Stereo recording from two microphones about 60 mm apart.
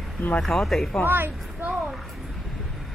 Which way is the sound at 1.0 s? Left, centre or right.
Right.